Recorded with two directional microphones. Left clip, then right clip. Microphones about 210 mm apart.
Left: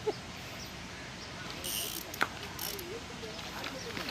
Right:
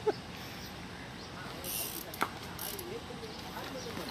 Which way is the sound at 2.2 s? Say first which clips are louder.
Left 2 dB; 45° right (ahead or behind).